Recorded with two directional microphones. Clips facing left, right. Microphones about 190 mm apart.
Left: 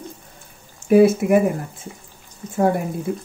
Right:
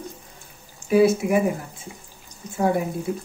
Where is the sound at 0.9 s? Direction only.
55° left (ahead or behind).